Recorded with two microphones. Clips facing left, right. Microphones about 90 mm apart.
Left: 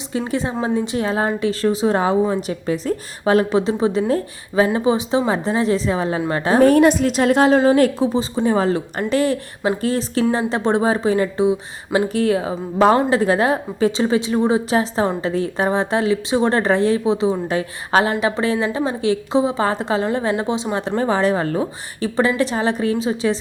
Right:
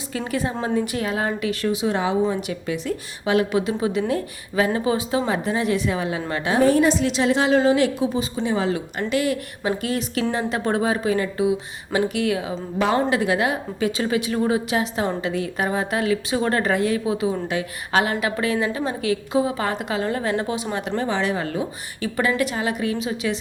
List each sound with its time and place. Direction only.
0.1 s a woman's voice: 25° left (ahead or behind)
6.6 s a woman's voice: 55° left (ahead or behind); by 23.4 s 30° left (ahead or behind)